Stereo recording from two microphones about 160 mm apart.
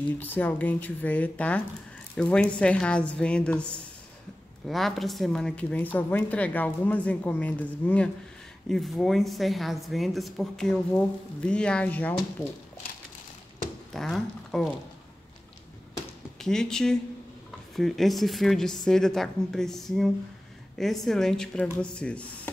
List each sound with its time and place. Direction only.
0.2 s a woman's voice: 10° left (ahead or behind)
13.9 s speech: centre (ahead or behind)
16.3 s a woman's voice: 5° left (ahead or behind)